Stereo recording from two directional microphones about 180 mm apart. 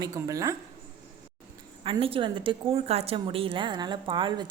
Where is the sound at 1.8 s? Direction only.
30° right (ahead or behind).